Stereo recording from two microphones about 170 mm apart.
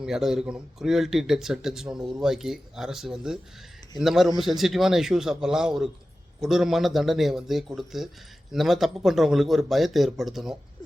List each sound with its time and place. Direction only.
0.0 s speech: 5° right (ahead or behind)